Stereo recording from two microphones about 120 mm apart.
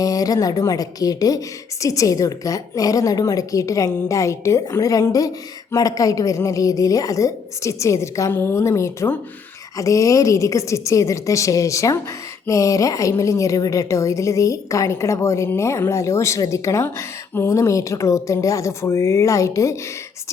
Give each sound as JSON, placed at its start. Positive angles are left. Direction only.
{"t": 0.0, "sound": "a woman's voice", "side_deg": 30}